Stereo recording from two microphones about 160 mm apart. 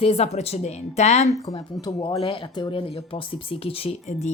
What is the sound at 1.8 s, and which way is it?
Speech, 25° left (ahead or behind).